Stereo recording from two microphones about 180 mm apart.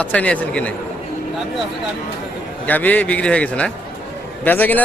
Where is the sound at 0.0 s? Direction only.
5° left (ahead or behind).